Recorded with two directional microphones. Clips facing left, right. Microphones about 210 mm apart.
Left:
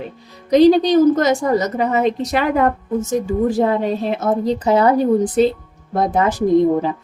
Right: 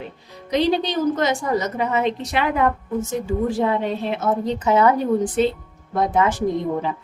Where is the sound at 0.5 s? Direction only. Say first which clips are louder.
Left 9 dB; 40° left (ahead or behind).